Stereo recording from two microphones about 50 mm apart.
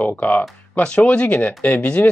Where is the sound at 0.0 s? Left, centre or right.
Left.